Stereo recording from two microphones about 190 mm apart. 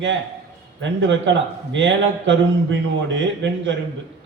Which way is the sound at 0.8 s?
70° right (ahead or behind).